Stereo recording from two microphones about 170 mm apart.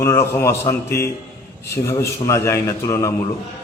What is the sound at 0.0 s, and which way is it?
A man's voice, 15° left (ahead or behind).